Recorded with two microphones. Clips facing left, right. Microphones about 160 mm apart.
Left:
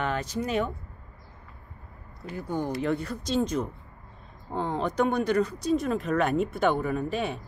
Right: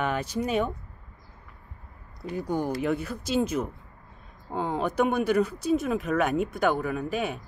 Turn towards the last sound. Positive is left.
turn(degrees=-5)  # may be behind; listen again after turning